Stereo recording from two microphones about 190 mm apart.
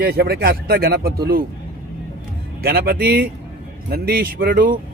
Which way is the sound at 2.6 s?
55° right (ahead or behind).